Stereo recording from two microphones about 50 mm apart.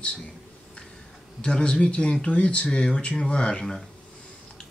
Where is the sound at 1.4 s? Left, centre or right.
Left.